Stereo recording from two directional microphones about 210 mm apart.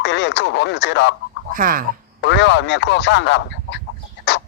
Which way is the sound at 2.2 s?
55° left (ahead or behind).